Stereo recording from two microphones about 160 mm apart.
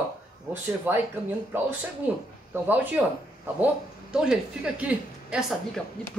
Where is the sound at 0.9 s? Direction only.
10° right (ahead or behind).